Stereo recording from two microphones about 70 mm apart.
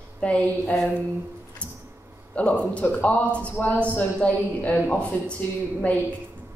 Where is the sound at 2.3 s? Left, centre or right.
Centre.